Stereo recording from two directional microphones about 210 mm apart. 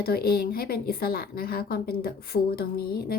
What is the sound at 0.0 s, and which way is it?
A woman's voice, 45° left (ahead or behind).